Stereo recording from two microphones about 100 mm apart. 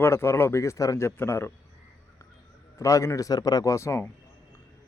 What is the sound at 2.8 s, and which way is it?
Speech, 35° left (ahead or behind).